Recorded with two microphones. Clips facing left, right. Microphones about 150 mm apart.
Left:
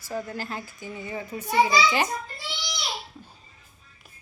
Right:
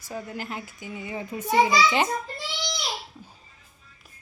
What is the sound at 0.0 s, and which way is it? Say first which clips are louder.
A child's voice: left 2 dB; 15° right (ahead or behind).